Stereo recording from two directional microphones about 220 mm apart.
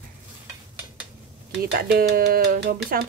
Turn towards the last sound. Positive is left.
turn(degrees=-45)  # may be behind; listen again after turning